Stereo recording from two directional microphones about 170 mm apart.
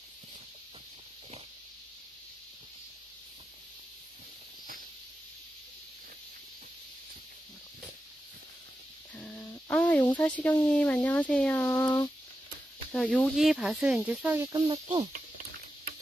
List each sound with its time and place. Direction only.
9.1 s a sound: 5° left (ahead or behind)
10.1 s speech: 10° left (ahead or behind); by 14.6 s 15° right (ahead or behind)
14.7 s speech: 25° right (ahead or behind)